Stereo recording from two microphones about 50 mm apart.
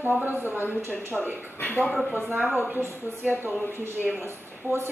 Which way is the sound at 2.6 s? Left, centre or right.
Right.